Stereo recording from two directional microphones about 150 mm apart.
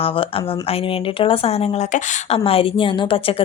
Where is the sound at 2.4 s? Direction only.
40° left (ahead or behind).